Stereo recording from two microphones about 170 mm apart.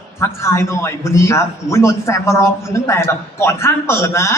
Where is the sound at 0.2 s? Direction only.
15° left (ahead or behind).